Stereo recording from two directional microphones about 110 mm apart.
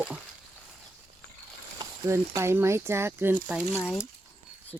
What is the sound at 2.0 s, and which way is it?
Speech, 25° right (ahead or behind).